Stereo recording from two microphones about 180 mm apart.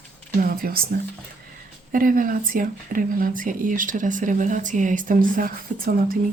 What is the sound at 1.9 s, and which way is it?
Speech, 50° right (ahead or behind).